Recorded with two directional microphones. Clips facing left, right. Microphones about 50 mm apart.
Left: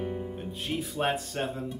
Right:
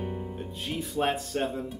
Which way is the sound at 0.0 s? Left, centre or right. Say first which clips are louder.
Left 1 dB; centre.